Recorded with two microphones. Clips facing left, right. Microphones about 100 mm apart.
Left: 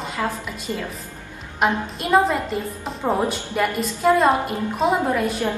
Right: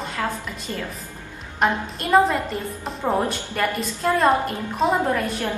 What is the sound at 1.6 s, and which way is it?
A woman's voice, 5° left (ahead or behind).